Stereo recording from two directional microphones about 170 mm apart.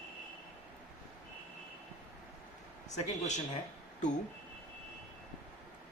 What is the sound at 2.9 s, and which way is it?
Speech, 45° left (ahead or behind).